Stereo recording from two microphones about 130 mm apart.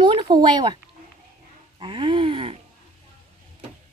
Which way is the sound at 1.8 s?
40° right (ahead or behind).